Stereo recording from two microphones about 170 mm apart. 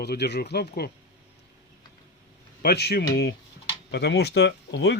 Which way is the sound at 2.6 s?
70° left (ahead or behind).